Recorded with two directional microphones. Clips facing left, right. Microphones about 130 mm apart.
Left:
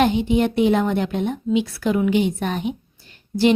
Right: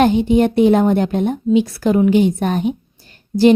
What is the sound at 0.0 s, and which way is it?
A woman's voice, 40° right (ahead or behind).